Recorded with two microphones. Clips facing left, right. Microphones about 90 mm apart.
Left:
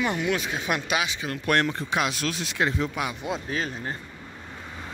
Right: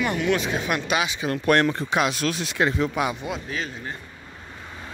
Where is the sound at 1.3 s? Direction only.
40° right (ahead or behind).